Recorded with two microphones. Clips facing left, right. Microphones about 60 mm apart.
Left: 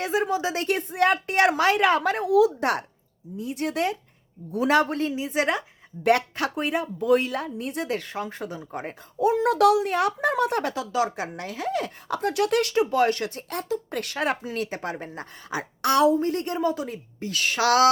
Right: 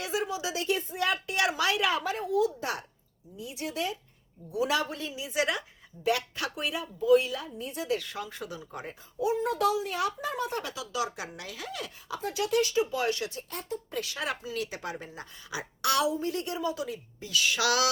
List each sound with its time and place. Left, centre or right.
0.0 s a woman's voice: left
2.2 s speech: left
3.3 s a woman's voice: left
6.0 s speech: left
6.3 s speech: left
7.2 s a woman's voice: left
7.9 s speech: left
9.3 s a woman's voice: left
12.0 s speech: left
13.5 s speech: left
14.0 s a woman's voice: left